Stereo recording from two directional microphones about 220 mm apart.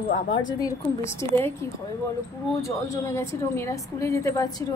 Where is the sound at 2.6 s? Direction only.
10° left (ahead or behind).